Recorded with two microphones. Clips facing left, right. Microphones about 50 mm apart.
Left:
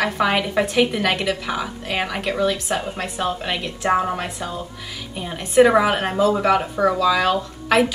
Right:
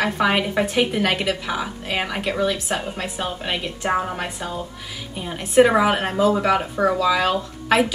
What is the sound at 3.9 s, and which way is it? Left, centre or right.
A woman's voice, centre.